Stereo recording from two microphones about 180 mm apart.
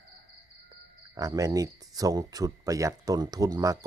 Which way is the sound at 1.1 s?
20° right (ahead or behind).